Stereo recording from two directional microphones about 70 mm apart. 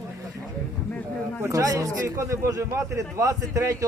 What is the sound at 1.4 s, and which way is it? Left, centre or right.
Speech, right.